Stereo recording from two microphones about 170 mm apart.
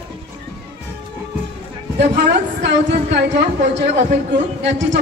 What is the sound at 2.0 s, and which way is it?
Speech, 90° right.